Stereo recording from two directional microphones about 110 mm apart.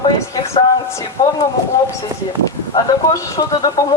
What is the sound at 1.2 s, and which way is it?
Speech, 40° left (ahead or behind).